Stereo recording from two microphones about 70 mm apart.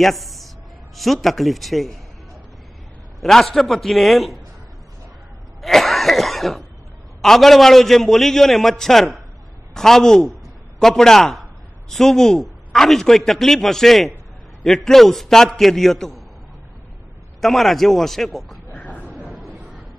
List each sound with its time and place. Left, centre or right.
0.0 s a man's voice: centre
3.2 s a man's voice: centre
5.6 s cough: centre
7.2 s a man's voice: centre
10.3 s a sound: centre
11.9 s a man's voice: centre
17.4 s a man's voice: centre
18.8 s a sound: left
19.3 s a sound: centre